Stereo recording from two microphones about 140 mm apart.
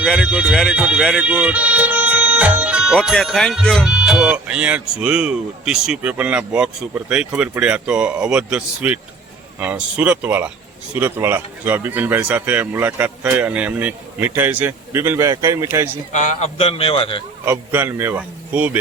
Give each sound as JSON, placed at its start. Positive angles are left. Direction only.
{"t": 0.2, "sound": "speech", "side_deg": -10}
{"t": 16.1, "sound": "speech", "side_deg": 60}
{"t": 17.4, "sound": "speech", "side_deg": -15}